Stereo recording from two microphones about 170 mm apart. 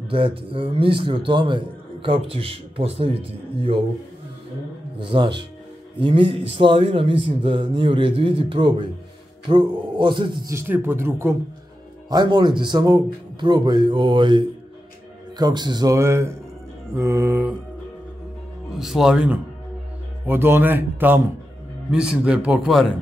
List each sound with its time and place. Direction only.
0.1 s a man's voice: 30° right (ahead or behind)
4.9 s a man's voice: 30° right (ahead or behind)
10.5 s a man's voice: 15° right (ahead or behind)
12.1 s a man's voice: 25° right (ahead or behind)
18.7 s a man's voice: centre (ahead or behind)